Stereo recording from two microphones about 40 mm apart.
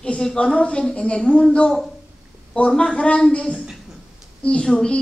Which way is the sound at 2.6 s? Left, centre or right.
Left.